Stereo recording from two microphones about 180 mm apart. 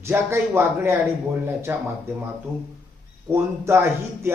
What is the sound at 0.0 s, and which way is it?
Speech, 15° right (ahead or behind).